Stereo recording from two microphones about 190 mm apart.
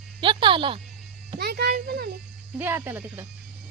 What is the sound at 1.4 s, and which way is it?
Speech, 55° right (ahead or behind).